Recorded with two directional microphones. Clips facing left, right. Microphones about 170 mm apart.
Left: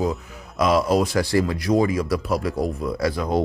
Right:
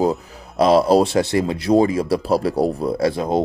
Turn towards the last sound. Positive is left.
turn(degrees=-25)  # may be behind; listen again after turning